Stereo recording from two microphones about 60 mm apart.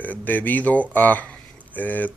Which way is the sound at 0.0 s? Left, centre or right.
Left.